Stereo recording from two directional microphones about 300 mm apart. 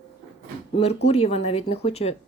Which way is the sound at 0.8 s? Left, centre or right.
Centre.